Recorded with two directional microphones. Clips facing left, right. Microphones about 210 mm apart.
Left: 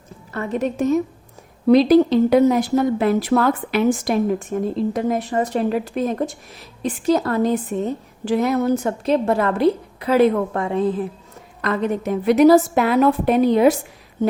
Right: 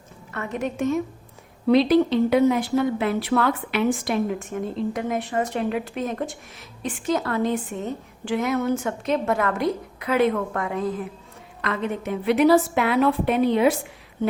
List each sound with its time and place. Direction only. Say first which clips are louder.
0.3 s speech: left 5 dB; 35° left (ahead or behind)
11.6 s speech: left 5 dB; 40° left (ahead or behind)